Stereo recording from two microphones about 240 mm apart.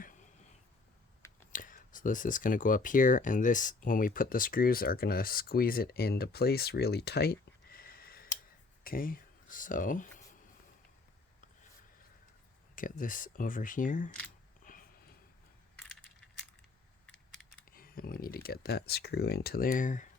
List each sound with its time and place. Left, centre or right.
1.5 s speech: left
12.7 s speech: left
14.6 s a sound: left
17.7 s speech: left